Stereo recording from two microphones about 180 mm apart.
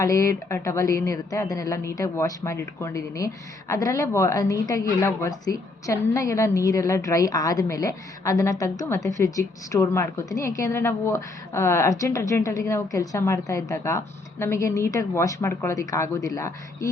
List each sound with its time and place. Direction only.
0.0 s speech: 20° left (ahead or behind)